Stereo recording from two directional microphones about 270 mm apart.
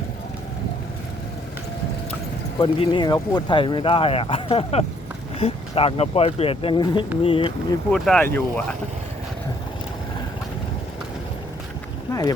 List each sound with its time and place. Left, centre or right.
2.6 s speech: centre
7.9 s speech: centre